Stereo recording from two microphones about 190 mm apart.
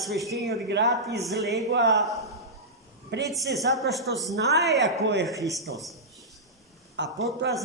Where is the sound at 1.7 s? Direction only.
65° right (ahead or behind).